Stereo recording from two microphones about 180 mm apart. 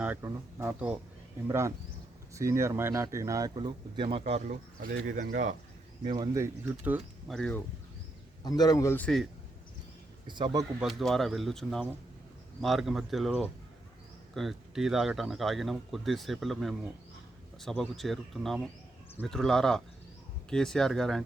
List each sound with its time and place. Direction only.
0.0 s speech: 15° right (ahead or behind)
4.2 s speech: 40° right (ahead or behind)
6.1 s speech: 20° right (ahead or behind)
7.3 s speech: 5° left (ahead or behind)
8.4 s speech: 20° left (ahead or behind)
10.2 s a man's voice: 25° right (ahead or behind)
10.8 s speech: centre (ahead or behind)